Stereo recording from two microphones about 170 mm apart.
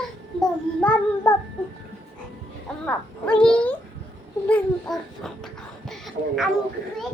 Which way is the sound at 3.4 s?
5° left (ahead or behind).